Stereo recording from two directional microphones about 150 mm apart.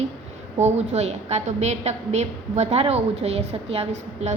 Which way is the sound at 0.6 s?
45° right (ahead or behind).